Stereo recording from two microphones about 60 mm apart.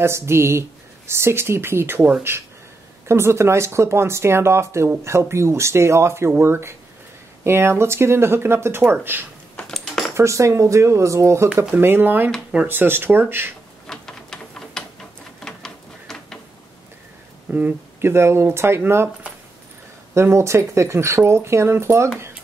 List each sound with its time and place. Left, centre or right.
0.0 s speech: right
3.1 s speech: right
9.6 s typing: centre
10.1 s speech: right
11.7 s speech: right
13.8 s a sound: centre
17.5 s speech: right
18.0 s speech: right
20.2 s speech: right